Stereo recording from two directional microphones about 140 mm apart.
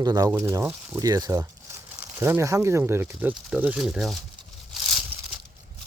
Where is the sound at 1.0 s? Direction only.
25° right (ahead or behind); by 4.2 s centre (ahead or behind).